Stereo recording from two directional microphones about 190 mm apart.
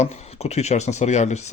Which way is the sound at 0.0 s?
35° left (ahead or behind).